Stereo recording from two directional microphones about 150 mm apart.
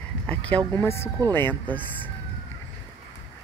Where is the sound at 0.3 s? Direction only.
10° left (ahead or behind).